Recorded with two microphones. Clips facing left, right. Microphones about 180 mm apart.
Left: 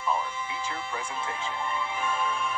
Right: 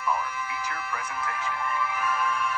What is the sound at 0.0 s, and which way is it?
Music, 25° left (ahead or behind).